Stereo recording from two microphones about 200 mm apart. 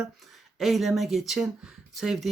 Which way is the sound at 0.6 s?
Centre (ahead or behind).